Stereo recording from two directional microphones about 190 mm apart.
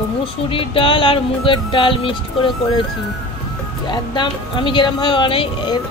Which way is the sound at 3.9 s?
25° left (ahead or behind).